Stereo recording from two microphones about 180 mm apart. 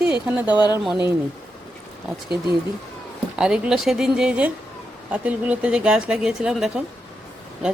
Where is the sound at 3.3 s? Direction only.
5° right (ahead or behind).